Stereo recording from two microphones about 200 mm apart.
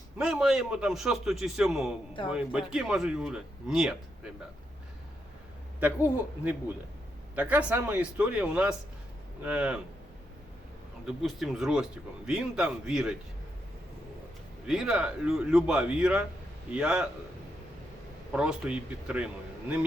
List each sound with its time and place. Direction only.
0.2 s speech: 5° right (ahead or behind)
5.8 s speech: 10° right (ahead or behind)
11.0 s speech: centre (ahead or behind)
14.7 s speech: centre (ahead or behind)
18.3 s speech: 5° right (ahead or behind)